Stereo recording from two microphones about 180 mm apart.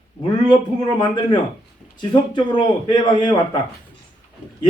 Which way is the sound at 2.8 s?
25° left (ahead or behind).